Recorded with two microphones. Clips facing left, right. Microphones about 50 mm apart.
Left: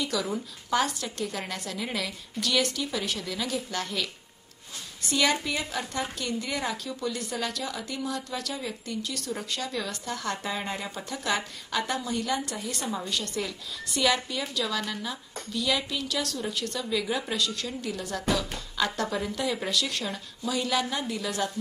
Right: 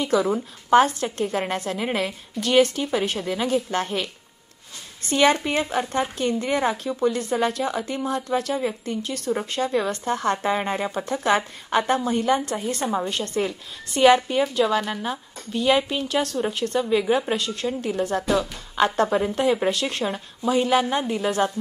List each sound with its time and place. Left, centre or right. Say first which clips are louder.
0.0 s speech: right 8 dB; right
5.1 s speech: right 7 dB; right